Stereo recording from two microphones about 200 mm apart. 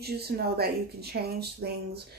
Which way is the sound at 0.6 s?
50° right (ahead or behind).